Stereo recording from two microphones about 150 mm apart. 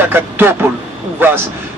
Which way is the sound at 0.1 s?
15° right (ahead or behind).